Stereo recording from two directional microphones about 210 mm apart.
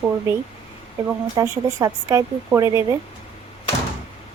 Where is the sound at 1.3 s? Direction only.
15° right (ahead or behind).